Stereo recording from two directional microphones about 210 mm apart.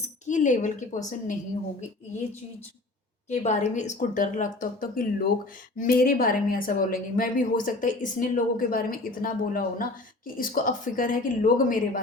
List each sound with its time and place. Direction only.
0.3 s a woman's voice: 35° left (ahead or behind)
3.2 s a woman's voice: 35° left (ahead or behind)